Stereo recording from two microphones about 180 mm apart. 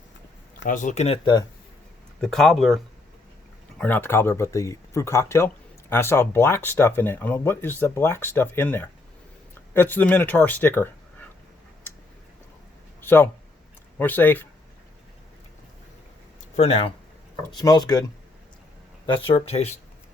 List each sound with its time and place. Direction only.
0.6 s speech: 45° left (ahead or behind); by 1.5 s 25° left (ahead or behind)
2.2 s speech: centre (ahead or behind)
13.1 s speech: 10° left (ahead or behind)
16.6 s speech: 35° left (ahead or behind)
17.5 s speech: 20° left (ahead or behind)
19.3 s speech: 35° left (ahead or behind)